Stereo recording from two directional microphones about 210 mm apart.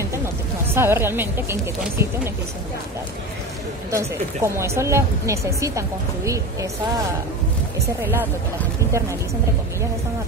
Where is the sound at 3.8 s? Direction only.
15° right (ahead or behind).